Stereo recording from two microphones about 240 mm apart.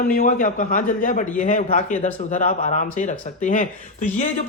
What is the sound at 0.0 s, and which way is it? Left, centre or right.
A man's voice, left.